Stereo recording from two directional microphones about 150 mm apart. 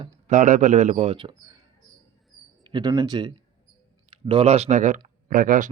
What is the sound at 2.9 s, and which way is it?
A man's voice, 25° right (ahead or behind).